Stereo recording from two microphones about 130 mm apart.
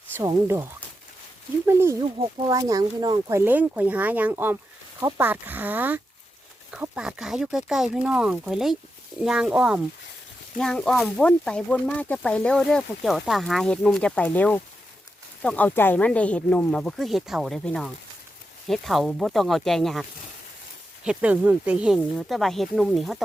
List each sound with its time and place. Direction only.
0.2 s speech: 20° right (ahead or behind)
2.1 s speech: 40° right (ahead or behind)
2.5 s speech: 25° right (ahead or behind)
3.4 s speech: 15° right (ahead or behind)
10.6 s speech: 5° left (ahead or behind)
21.0 s speech: 10° right (ahead or behind)